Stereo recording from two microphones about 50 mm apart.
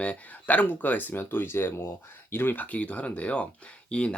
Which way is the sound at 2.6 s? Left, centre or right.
Left.